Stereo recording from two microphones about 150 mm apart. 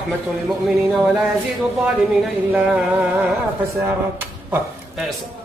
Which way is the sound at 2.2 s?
5° right (ahead or behind).